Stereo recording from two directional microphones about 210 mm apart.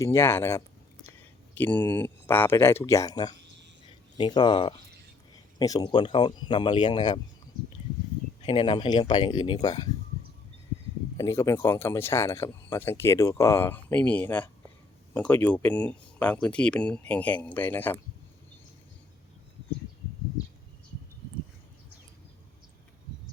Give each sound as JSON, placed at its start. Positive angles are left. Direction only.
{"t": 0.0, "sound": "speech", "side_deg": 15}
{"t": 8.4, "sound": "speech", "side_deg": 25}
{"t": 11.2, "sound": "speech", "side_deg": 15}